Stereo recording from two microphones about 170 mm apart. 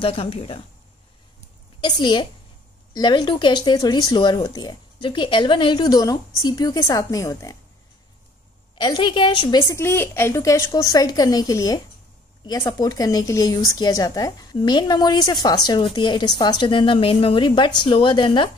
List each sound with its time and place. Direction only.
0.0 s speech: 35° left (ahead or behind)
1.8 s speech: 25° left (ahead or behind)
8.7 s speech: 25° left (ahead or behind)